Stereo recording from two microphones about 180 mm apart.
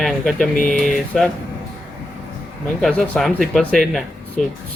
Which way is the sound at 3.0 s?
Centre (ahead or behind).